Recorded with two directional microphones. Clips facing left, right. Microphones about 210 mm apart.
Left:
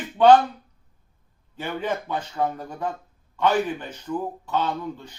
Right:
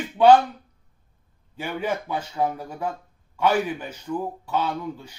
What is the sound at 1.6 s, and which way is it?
Speech, 10° right (ahead or behind).